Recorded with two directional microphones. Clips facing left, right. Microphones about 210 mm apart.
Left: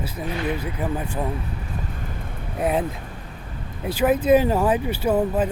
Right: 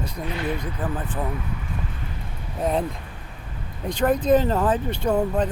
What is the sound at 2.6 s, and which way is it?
Speech, 5° left (ahead or behind).